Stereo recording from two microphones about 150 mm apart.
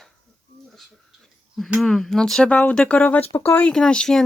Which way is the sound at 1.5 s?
Centre (ahead or behind).